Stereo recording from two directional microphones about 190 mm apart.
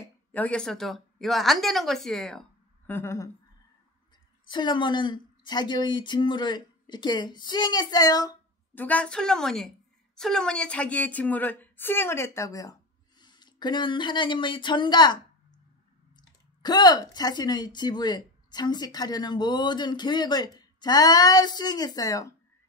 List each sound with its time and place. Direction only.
0.0 s a woman's voice: 10° left (ahead or behind)
2.9 s a woman's voice: 15° left (ahead or behind)
4.5 s speech: 25° left (ahead or behind)
8.8 s a woman's voice: 5° left (ahead or behind)